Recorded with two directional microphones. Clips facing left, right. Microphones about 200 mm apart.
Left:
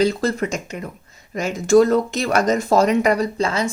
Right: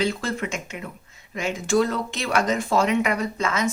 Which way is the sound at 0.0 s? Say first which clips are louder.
Left 6 dB; 40° left (ahead or behind).